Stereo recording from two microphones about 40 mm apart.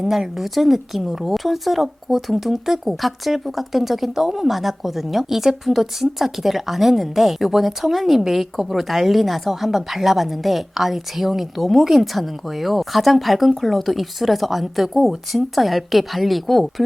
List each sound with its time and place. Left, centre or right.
0.0 s speech: centre